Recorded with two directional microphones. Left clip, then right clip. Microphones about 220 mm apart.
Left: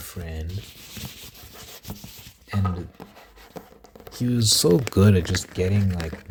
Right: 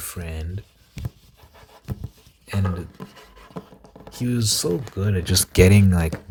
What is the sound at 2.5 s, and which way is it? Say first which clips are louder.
Speech: right 1 dB; 10° right (ahead or behind).